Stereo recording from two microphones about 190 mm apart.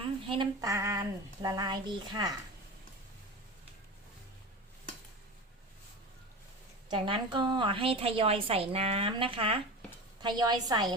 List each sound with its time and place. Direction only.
0.3 s a woman's voice: 20° right (ahead or behind)
6.9 s a woman's voice: 25° right (ahead or behind)